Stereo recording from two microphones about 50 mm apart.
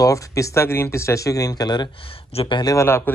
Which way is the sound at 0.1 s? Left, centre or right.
Left.